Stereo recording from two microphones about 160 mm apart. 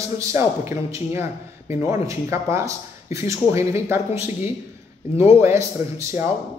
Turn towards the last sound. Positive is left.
turn(degrees=-15)  # may be behind; listen again after turning